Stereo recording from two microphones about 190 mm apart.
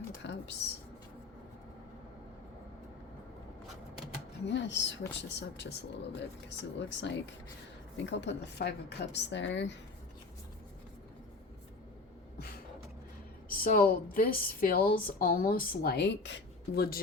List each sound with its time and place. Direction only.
0.2 s speech: 65° left (ahead or behind)
4.4 s speech: 70° left (ahead or behind)
13.5 s a woman's voice: 50° left (ahead or behind)